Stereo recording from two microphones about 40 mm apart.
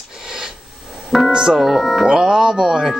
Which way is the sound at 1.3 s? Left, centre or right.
Centre.